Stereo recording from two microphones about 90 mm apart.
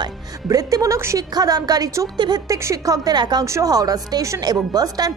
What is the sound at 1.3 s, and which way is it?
A woman's voice, 45° right (ahead or behind).